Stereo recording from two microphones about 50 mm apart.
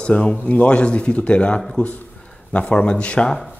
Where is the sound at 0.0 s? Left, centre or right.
Left.